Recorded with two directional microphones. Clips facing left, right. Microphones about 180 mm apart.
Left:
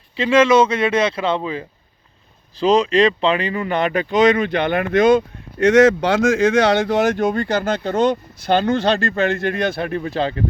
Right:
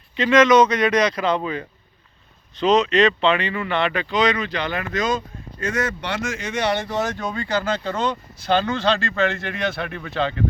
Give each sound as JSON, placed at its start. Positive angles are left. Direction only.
{"t": 0.2, "sound": "speech", "side_deg": 30}
{"t": 2.6, "sound": "speech", "side_deg": 30}
{"t": 7.3, "sound": "speech", "side_deg": 50}